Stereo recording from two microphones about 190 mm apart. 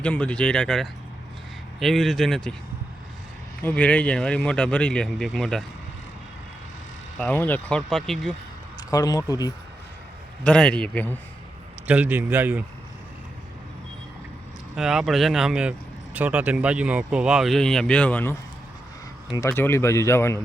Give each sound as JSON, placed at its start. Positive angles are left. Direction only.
{"t": 0.0, "sound": "speech", "side_deg": 5}
{"t": 3.6, "sound": "speech", "side_deg": 10}
{"t": 7.2, "sound": "speech", "side_deg": 10}
{"t": 8.9, "sound": "speech", "side_deg": 20}
{"t": 10.4, "sound": "speech", "side_deg": 5}
{"t": 11.9, "sound": "a man's voice", "side_deg": -10}
{"t": 14.8, "sound": "speech", "side_deg": 0}